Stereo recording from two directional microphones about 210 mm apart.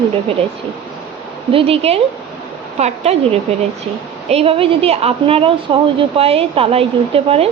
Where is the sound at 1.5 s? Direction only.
25° right (ahead or behind).